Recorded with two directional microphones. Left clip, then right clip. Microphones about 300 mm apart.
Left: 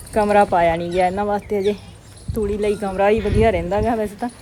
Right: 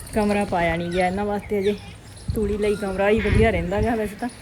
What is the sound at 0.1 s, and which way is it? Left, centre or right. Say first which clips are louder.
Speech: left 7 dB; centre.